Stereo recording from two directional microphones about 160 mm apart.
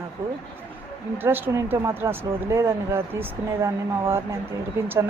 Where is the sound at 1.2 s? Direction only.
15° right (ahead or behind).